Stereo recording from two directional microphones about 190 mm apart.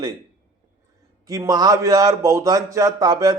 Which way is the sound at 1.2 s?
20° right (ahead or behind).